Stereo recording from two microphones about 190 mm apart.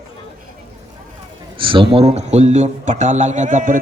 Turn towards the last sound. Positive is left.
turn(degrees=-45)  # may be behind; listen again after turning